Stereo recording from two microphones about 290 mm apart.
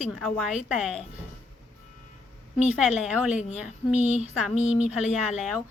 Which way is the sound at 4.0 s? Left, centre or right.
Right.